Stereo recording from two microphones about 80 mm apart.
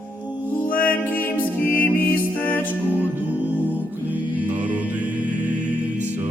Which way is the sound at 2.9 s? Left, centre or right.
Right.